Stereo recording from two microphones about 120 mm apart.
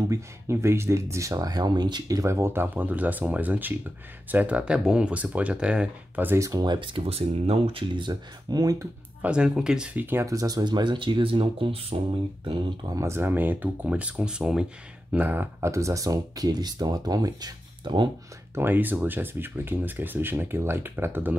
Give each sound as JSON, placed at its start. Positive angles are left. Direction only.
{"t": 0.1, "sound": "speech", "side_deg": -20}
{"t": 9.2, "sound": "speech", "side_deg": -10}
{"t": 12.4, "sound": "speech", "side_deg": -40}
{"t": 12.9, "sound": "speech", "side_deg": -25}
{"t": 18.5, "sound": "speech", "side_deg": -15}